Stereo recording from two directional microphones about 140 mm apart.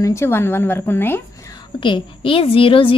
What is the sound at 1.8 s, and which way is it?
A woman's voice, 35° left (ahead or behind).